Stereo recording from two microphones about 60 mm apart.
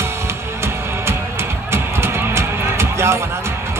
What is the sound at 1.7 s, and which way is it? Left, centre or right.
Music, right.